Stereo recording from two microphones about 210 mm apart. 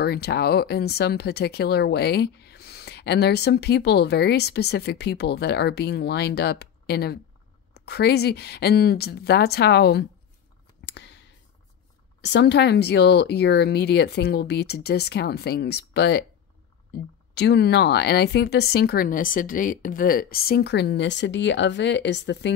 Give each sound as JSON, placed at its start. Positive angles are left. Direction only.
{"t": 0.0, "sound": "speech", "side_deg": 50}
{"t": 10.9, "sound": "clicking", "side_deg": 55}
{"t": 12.2, "sound": "speech", "side_deg": 55}